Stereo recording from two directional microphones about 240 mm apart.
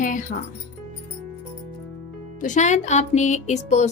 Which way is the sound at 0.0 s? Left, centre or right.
Left.